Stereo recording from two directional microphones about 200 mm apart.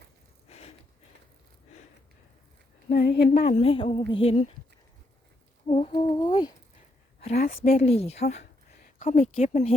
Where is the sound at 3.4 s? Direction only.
30° left (ahead or behind).